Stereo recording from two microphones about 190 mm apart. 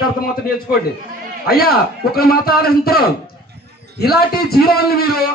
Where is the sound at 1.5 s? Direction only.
50° left (ahead or behind).